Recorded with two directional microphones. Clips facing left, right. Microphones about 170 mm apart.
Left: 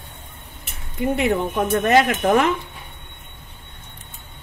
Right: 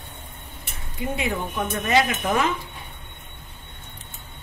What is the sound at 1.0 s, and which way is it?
Speech, 60° left (ahead or behind).